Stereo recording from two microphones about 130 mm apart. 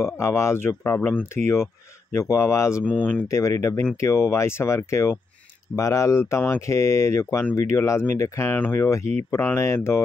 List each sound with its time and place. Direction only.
0.0 s speech: 20° left (ahead or behind)